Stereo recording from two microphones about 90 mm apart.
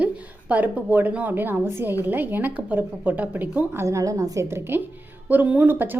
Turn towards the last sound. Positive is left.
turn(degrees=-20)  # may be behind; listen again after turning